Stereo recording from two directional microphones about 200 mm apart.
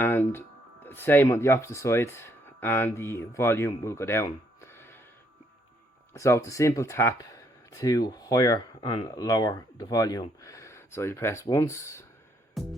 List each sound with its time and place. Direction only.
0.0 s speech: 10° left (ahead or behind)
6.1 s speech: 15° left (ahead or behind)
12.6 s music: centre (ahead or behind)